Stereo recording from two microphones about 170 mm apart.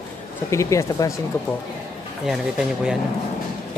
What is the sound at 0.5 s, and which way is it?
Speech, 20° left (ahead or behind).